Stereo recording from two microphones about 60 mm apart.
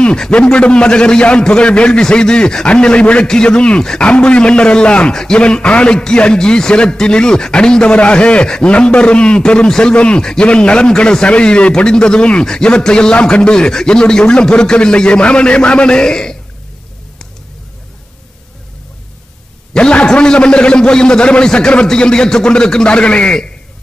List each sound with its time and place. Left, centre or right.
0.0 s a man's voice: centre
19.7 s a man's voice: centre